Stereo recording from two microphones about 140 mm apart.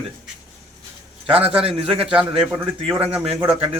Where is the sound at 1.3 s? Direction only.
45° right (ahead or behind).